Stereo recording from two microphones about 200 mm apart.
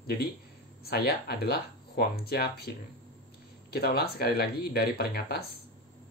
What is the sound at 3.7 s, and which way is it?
Speech, 50° left (ahead or behind).